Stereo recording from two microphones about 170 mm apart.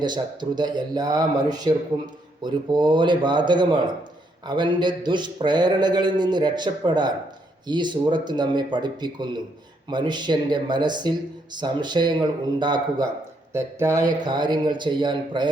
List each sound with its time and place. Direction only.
0.0 s speech: 25° right (ahead or behind)